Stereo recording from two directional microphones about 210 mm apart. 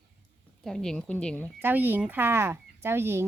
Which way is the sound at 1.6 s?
10° right (ahead or behind).